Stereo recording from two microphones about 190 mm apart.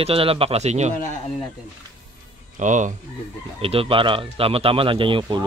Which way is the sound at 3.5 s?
30° right (ahead or behind).